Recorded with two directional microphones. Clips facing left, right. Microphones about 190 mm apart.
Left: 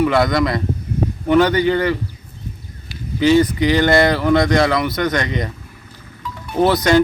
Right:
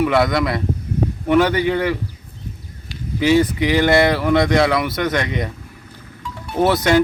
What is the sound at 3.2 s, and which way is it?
A man's voice, 5° right (ahead or behind).